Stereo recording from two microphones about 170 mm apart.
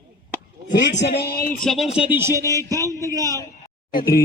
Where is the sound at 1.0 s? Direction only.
80° left; by 1.6 s 65° left (ahead or behind).